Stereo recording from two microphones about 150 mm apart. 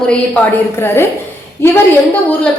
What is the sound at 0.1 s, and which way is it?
Speech, 10° left (ahead or behind).